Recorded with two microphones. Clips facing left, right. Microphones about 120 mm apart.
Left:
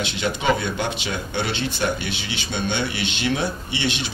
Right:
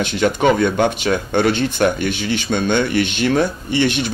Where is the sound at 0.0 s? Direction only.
50° right (ahead or behind).